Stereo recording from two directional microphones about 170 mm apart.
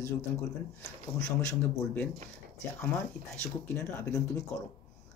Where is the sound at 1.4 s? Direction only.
10° left (ahead or behind).